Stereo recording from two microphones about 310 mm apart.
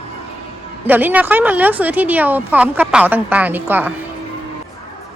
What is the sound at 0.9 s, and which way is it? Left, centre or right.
A woman's voice, centre.